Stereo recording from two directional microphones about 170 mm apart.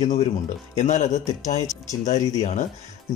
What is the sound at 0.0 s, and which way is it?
Speech, 40° left (ahead or behind).